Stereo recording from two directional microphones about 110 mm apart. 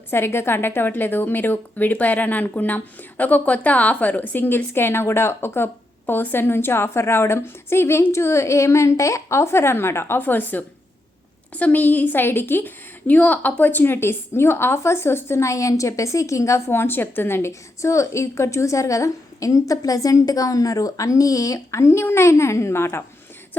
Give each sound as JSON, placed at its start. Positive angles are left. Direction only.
{"t": 0.1, "sound": "a woman's voice", "side_deg": 20}